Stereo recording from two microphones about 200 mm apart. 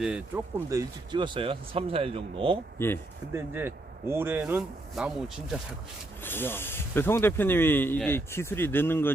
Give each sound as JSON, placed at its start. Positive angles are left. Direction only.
{"t": 0.3, "sound": "speech", "side_deg": -15}
{"t": 2.7, "sound": "speech", "side_deg": 10}
{"t": 3.3, "sound": "speech", "side_deg": -10}
{"t": 6.2, "sound": "speech", "side_deg": 10}